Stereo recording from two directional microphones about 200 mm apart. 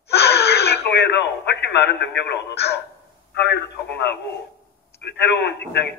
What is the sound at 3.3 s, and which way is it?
A man's voice, 55° left (ahead or behind).